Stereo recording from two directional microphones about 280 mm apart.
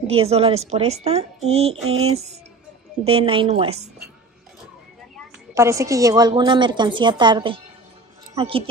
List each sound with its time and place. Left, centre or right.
0.0 s a woman's voice: right
5.5 s a woman's voice: centre